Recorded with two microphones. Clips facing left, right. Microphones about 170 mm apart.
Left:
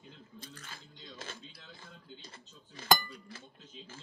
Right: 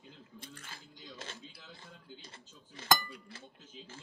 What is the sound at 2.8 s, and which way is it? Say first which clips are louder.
Speech: left 2 dB; 30° right (ahead or behind).